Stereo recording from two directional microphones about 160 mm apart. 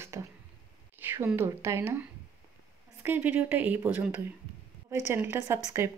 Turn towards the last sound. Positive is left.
turn(degrees=-20)  # may be behind; listen again after turning